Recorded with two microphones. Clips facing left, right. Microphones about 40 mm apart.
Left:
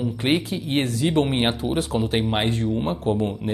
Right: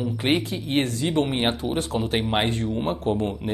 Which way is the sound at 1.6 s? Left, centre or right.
Centre.